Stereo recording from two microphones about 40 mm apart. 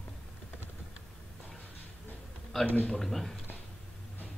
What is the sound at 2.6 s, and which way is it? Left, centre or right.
Speech, left.